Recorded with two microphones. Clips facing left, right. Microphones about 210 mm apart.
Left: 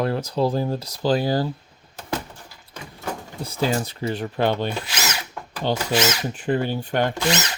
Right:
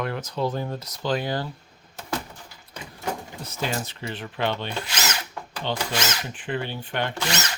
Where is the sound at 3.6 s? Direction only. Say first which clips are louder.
Left 6 dB; 35° left (ahead or behind).